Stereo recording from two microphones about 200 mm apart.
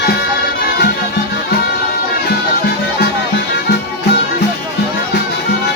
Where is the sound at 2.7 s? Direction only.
55° left (ahead or behind).